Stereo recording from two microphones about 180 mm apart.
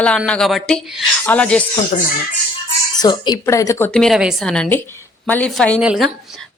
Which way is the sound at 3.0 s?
25° left (ahead or behind).